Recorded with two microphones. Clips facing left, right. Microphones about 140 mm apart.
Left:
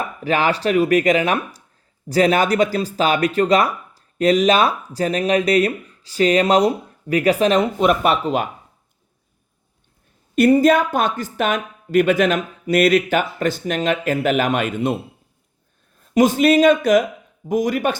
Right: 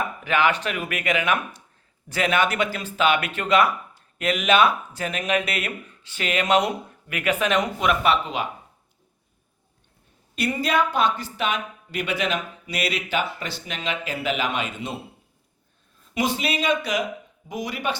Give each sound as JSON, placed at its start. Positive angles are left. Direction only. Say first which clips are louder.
{"t": 0.3, "sound": "speech", "louder": "left 5 dB", "side_deg": 35}
{"t": 10.3, "sound": "speech", "louder": "left 10 dB", "side_deg": 50}
{"t": 16.1, "sound": "speech", "louder": "left 11 dB", "side_deg": 45}